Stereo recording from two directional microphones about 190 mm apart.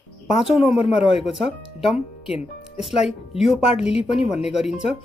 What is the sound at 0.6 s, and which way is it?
Speech, 30° left (ahead or behind).